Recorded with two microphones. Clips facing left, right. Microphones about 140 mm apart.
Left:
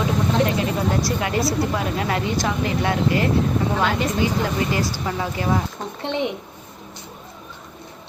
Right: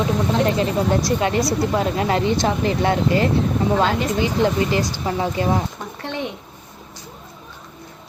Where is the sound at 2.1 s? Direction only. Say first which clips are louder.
Right 5 dB; 30° right (ahead or behind).